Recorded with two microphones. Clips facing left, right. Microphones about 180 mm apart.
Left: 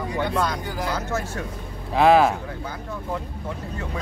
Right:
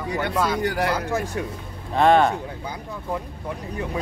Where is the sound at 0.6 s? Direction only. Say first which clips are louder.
Right 6 dB; 75° right (ahead or behind).